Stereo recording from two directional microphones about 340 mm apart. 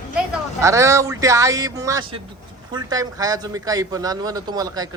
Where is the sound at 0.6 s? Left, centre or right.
Centre.